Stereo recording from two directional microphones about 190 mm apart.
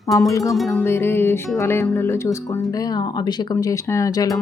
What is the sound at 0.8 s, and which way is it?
Speech, 10° left (ahead or behind).